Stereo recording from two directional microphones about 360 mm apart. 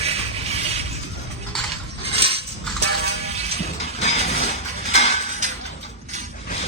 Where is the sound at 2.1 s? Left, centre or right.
Centre.